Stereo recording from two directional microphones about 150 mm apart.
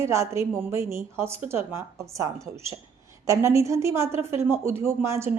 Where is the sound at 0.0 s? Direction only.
20° right (ahead or behind).